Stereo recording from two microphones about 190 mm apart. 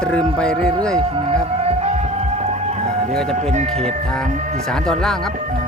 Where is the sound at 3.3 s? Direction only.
40° right (ahead or behind).